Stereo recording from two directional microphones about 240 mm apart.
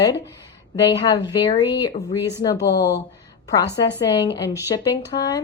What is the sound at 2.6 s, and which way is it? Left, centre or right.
Speech, left.